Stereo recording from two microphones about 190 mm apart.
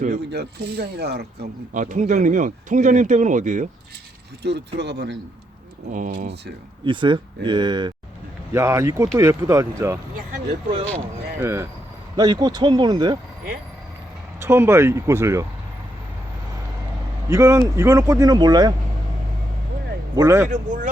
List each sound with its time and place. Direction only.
0.3 s speech: 60° right (ahead or behind)
1.7 s speech: 40° right (ahead or behind)
4.4 s speech: 65° right (ahead or behind)
5.9 s speech: 45° right (ahead or behind)
6.8 s speech: 25° right (ahead or behind)
11.3 s speech: 15° right (ahead or behind)
14.4 s speech: 15° right (ahead or behind)
17.2 s speech: 15° right (ahead or behind)
20.1 s speech: 15° right (ahead or behind)
20.5 s speech: 40° right (ahead or behind)